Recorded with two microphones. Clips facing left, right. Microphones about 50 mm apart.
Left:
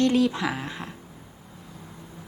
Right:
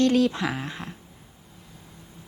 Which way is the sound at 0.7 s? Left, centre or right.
Centre.